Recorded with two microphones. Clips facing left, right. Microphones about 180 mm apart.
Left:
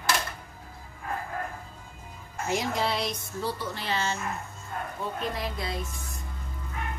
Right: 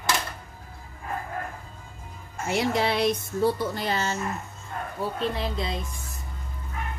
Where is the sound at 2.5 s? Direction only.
65° right (ahead or behind); by 4.2 s 40° right (ahead or behind).